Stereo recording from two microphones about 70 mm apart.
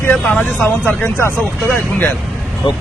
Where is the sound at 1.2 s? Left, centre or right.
Left.